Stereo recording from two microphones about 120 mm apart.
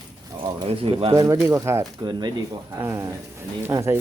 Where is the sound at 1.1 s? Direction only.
30° right (ahead or behind).